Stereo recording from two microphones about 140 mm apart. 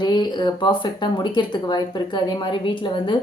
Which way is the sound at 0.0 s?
35° left (ahead or behind).